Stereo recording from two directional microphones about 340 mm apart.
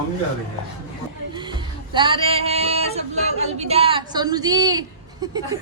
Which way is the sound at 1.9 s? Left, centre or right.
Centre.